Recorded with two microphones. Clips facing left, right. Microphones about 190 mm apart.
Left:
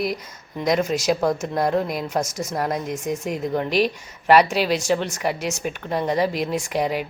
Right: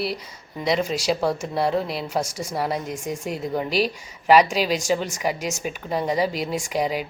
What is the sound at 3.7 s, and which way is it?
Speech, 35° right (ahead or behind).